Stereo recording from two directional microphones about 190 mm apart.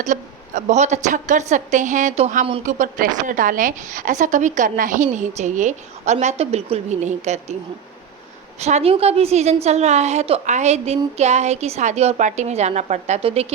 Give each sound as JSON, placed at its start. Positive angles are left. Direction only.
{"t": 0.0, "sound": "a woman's voice", "side_deg": -40}
{"t": 8.5, "sound": "a woman's voice", "side_deg": -35}